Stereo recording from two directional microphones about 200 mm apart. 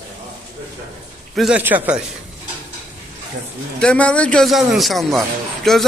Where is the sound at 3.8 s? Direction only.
5° left (ahead or behind).